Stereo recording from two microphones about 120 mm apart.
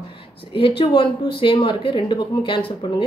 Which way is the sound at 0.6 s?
45° left (ahead or behind).